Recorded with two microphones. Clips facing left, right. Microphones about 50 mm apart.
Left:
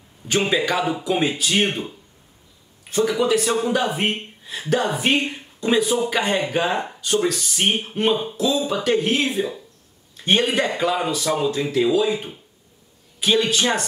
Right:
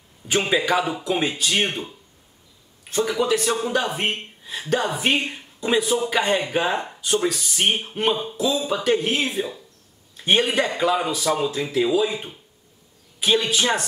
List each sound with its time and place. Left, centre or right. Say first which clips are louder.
0.4 s speech: even; centre
3.0 s a man's voice: left 2 dB; centre